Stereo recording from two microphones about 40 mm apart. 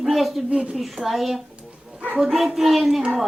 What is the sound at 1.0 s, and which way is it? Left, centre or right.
A man's voice, centre.